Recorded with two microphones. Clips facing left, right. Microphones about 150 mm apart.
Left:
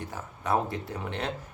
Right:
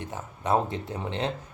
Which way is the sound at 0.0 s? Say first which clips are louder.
Right 2 dB; 20° right (ahead or behind).